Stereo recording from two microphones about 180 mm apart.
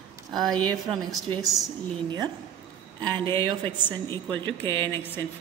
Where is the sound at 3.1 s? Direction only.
25° right (ahead or behind).